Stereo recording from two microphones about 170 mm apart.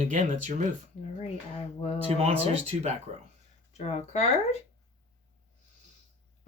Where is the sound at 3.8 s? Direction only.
40° left (ahead or behind).